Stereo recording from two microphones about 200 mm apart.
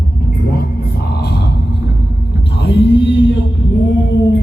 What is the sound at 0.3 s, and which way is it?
Music, 50° left (ahead or behind).